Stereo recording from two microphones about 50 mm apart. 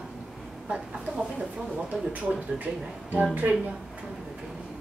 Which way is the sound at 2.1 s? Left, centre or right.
Right.